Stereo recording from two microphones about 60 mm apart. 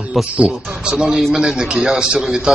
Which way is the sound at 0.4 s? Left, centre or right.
Centre.